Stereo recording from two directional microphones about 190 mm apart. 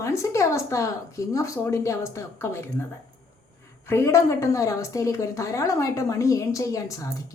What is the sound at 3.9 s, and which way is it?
Speech, 15° left (ahead or behind).